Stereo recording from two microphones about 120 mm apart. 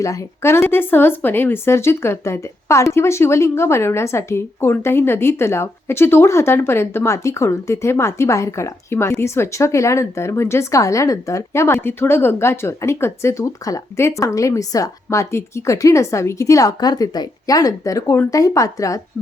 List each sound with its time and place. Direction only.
0.0 s speech: 25° left (ahead or behind)